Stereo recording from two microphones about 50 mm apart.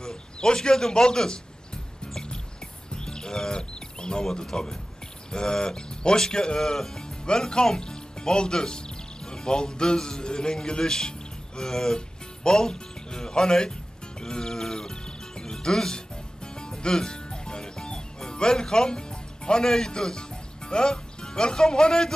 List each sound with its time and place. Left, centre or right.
0.0 s speech: centre
2.1 s music: centre
5.3 s speech: centre
14.2 s music: centre